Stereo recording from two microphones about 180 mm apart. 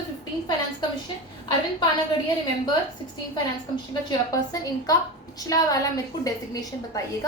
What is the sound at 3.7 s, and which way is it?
A woman's voice, 20° left (ahead or behind).